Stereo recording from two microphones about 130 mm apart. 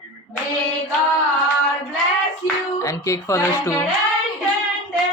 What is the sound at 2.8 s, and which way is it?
Speech, 25° left (ahead or behind).